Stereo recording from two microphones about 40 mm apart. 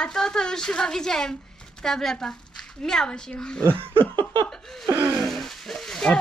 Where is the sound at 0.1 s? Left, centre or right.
Centre.